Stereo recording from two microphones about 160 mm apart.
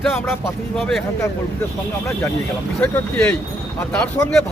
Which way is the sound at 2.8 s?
10° left (ahead or behind).